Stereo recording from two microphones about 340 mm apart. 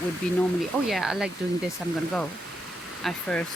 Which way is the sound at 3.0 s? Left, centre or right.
Centre.